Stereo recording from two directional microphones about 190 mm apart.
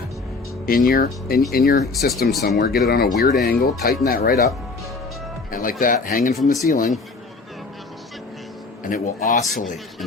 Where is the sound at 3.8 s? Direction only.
55° left (ahead or behind).